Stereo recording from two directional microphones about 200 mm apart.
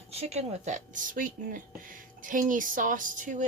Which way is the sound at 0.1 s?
30° right (ahead or behind).